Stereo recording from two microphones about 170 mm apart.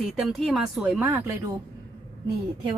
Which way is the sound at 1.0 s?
15° right (ahead or behind).